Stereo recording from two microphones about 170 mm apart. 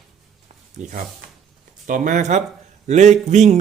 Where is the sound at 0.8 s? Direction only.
50° right (ahead or behind).